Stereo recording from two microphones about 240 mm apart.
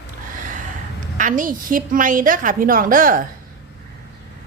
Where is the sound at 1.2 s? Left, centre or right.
Right.